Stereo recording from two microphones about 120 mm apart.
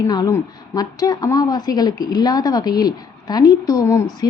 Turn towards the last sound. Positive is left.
turn(degrees=30)  # may be behind; listen again after turning